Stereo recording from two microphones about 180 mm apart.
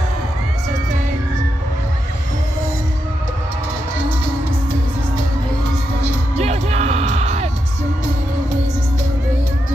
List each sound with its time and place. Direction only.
6.3 s music: 35° right (ahead or behind)